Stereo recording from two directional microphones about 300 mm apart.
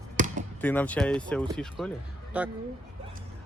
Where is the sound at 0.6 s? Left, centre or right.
Centre.